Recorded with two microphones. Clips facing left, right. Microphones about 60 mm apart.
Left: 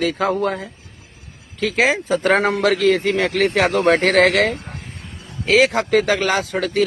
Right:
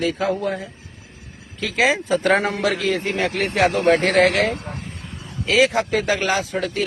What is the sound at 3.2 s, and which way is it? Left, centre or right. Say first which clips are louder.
Speech: left 2 dB; left.